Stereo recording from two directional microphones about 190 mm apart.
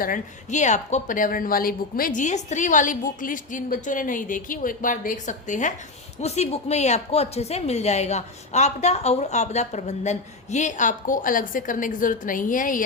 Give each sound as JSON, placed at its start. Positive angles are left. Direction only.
{"t": 0.0, "sound": "a woman's voice", "side_deg": 40}